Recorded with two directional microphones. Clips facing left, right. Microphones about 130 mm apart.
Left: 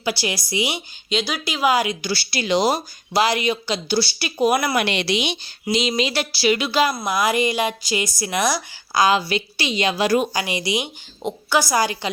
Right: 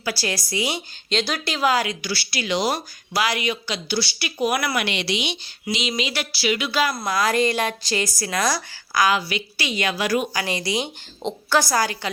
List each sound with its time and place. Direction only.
0.0 s a woman's voice: 20° left (ahead or behind); by 5.4 s 50° left (ahead or behind)
6.0 s a woman's voice: 35° left (ahead or behind)
10.4 s speech: 15° left (ahead or behind)